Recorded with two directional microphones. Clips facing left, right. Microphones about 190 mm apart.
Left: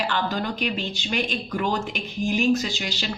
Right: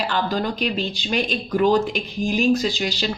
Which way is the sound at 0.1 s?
35° right (ahead or behind).